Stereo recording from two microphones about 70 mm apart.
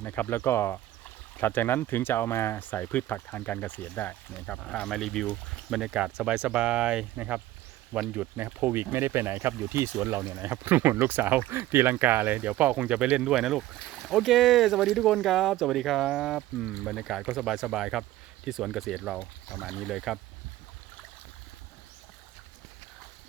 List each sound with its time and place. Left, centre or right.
0.0 s speech: left
4.6 s speech: centre
5.7 s speech: centre; by 10.3 s right
10.3 s speech: right; by 20.1 s centre